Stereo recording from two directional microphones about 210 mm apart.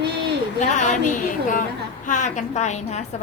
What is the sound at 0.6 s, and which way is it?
A woman's voice, 35° left (ahead or behind).